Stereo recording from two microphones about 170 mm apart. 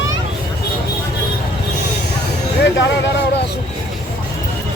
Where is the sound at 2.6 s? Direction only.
90° left.